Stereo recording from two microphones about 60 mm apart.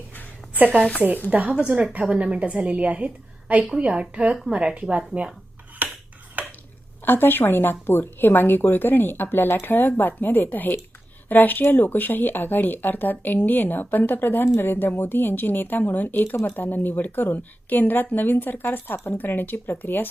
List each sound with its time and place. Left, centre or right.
0.1 s a sound: left
1.5 s a woman's voice: centre
5.8 s a sound: right
7.0 s a woman's voice: left
14.4 s speech: left
14.7 s a woman's voice: left